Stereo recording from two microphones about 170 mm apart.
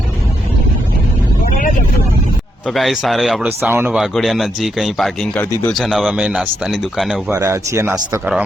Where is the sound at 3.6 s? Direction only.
10° right (ahead or behind).